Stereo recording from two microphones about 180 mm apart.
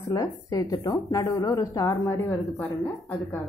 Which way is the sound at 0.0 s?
20° left (ahead or behind).